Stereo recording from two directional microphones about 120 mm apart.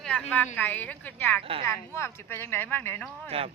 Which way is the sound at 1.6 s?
25° left (ahead or behind).